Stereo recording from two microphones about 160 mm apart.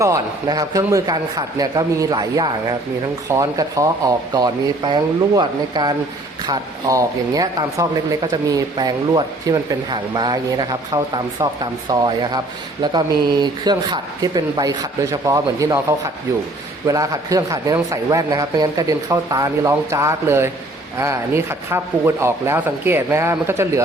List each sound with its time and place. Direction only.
0.0 s speech: 20° right (ahead or behind)